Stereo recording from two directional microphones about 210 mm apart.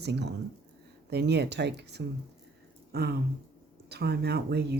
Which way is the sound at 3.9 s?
50° right (ahead or behind).